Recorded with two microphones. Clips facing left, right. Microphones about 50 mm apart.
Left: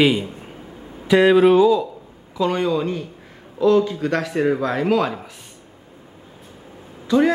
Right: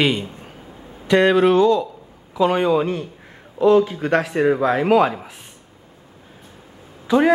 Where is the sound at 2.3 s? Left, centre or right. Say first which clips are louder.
Right 3 dB; centre.